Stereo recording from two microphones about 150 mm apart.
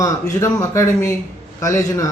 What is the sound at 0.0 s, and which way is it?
Speech, 20° left (ahead or behind).